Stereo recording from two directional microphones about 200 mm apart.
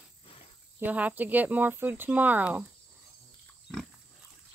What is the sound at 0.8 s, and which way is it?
Speech, 10° right (ahead or behind).